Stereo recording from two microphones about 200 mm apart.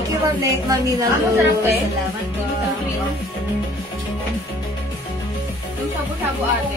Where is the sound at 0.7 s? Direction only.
15° right (ahead or behind).